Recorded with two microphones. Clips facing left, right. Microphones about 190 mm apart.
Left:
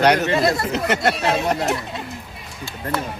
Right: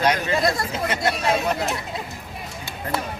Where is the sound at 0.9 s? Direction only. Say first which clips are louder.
Left 2 dB; 70° left (ahead or behind).